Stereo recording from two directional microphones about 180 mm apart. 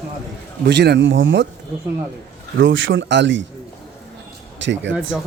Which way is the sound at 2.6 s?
90° right.